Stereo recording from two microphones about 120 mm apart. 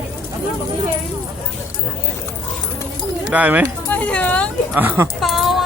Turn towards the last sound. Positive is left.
turn(degrees=0)  # may be behind; listen again after turning